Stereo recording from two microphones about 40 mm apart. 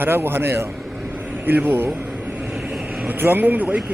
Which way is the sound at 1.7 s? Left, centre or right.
Right.